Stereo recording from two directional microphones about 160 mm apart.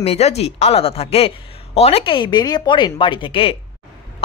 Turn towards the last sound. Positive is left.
turn(degrees=35)  # may be behind; listen again after turning